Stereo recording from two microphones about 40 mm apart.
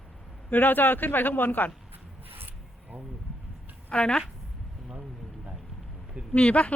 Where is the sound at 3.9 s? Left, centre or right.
Left.